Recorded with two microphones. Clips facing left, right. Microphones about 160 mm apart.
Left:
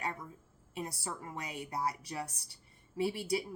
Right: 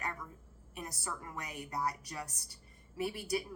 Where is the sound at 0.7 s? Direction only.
30° left (ahead or behind).